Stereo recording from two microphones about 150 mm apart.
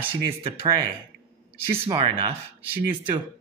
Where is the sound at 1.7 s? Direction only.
40° right (ahead or behind).